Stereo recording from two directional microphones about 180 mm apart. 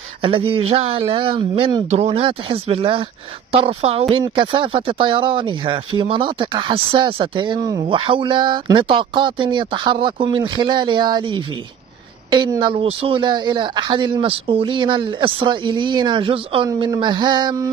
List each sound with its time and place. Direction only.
0.2 s speech: 30° right (ahead or behind)